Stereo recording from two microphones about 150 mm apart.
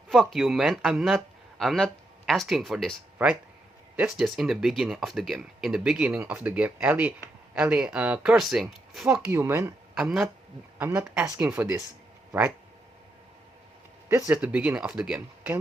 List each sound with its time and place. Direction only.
0.1 s speech: centre (ahead or behind); by 9.7 s 15° right (ahead or behind)
9.9 s speech: 5° right (ahead or behind)
10.8 s speech: 15° right (ahead or behind)
14.3 s speech: 10° right (ahead or behind)